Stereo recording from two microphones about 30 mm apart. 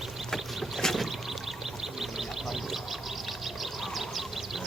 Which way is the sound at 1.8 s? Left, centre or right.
Centre.